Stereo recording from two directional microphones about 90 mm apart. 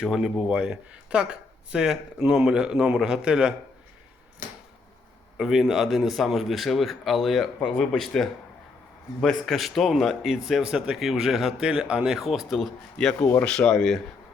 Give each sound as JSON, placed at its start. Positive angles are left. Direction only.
{"t": 0.0, "sound": "speech", "side_deg": -5}
{"t": 5.4, "sound": "speech", "side_deg": -5}
{"t": 13.1, "sound": "speech", "side_deg": 25}
{"t": 13.4, "sound": "speech", "side_deg": 10}